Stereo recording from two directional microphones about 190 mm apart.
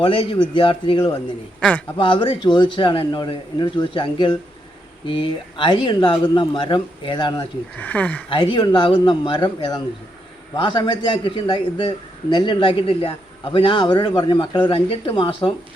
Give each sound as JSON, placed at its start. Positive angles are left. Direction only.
{"t": 0.0, "sound": "a man's voice", "side_deg": 25}
{"t": 7.8, "sound": "speech", "side_deg": 10}
{"t": 8.3, "sound": "a man's voice", "side_deg": 25}